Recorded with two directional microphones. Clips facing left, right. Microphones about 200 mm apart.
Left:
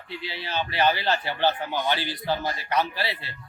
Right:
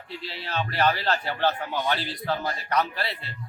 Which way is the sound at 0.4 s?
Centre (ahead or behind).